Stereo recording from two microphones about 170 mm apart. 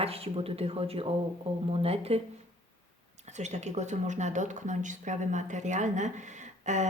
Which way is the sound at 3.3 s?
40° right (ahead or behind).